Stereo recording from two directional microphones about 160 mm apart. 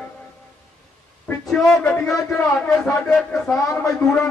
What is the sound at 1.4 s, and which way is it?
Speech, centre (ahead or behind).